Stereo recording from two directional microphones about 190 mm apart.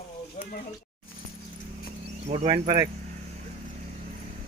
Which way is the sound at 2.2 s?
30° right (ahead or behind).